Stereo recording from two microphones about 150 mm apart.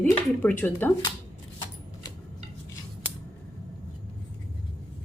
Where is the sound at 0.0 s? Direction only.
10° left (ahead or behind).